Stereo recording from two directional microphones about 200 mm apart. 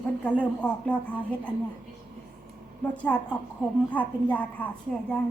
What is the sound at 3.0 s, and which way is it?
Speech, 5° left (ahead or behind).